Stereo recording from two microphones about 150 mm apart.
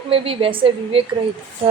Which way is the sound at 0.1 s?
40° right (ahead or behind).